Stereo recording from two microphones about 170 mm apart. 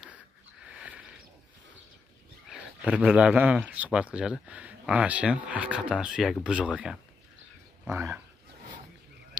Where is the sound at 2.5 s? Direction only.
5° right (ahead or behind).